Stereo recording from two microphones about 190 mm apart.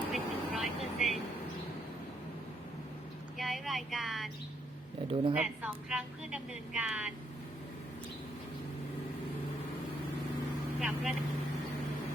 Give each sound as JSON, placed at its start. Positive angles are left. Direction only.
{"t": 0.1, "sound": "vehicle", "side_deg": 0}
{"t": 3.3, "sound": "speech", "side_deg": 0}
{"t": 5.0, "sound": "speech", "side_deg": -30}
{"t": 5.4, "sound": "speech", "side_deg": -5}
{"t": 10.8, "sound": "speech", "side_deg": 0}